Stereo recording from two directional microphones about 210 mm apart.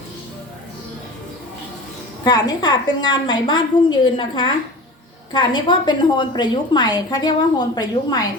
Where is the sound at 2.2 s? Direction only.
20° left (ahead or behind).